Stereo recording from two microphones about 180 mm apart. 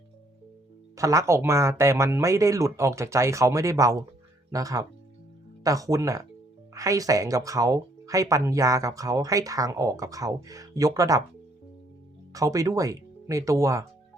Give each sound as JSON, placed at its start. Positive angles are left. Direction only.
{"t": 0.9, "sound": "speech", "side_deg": -15}
{"t": 12.3, "sound": "speech", "side_deg": -20}